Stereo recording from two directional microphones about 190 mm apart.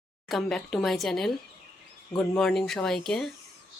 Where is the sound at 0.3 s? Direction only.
Centre (ahead or behind).